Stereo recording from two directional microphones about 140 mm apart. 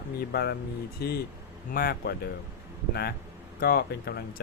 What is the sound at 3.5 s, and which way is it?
Speech, 90° left.